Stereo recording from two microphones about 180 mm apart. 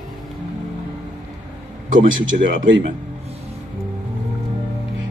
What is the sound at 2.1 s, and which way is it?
Speech, 90° right.